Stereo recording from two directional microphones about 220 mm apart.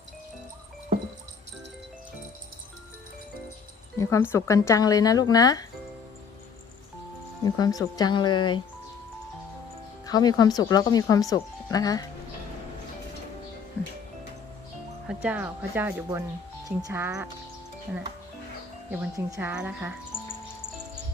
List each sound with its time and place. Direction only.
3.9 s speech: 15° left (ahead or behind)
7.4 s speech: 15° left (ahead or behind)
10.1 s speech: 15° left (ahead or behind)
15.0 s speech: 5° right (ahead or behind)
18.9 s speech: 10° right (ahead or behind)
20.1 s music: 10° left (ahead or behind)